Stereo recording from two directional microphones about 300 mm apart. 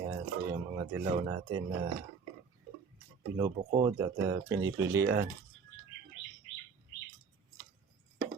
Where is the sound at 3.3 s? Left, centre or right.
Centre.